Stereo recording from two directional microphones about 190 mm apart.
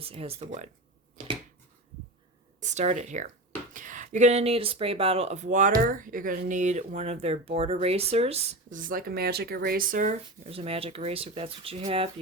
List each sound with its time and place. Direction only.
0.0 s speech: 30° right (ahead or behind)
2.6 s speech: 40° right (ahead or behind)
8.9 s speech: 50° right (ahead or behind)
10.4 s speech: 30° right (ahead or behind)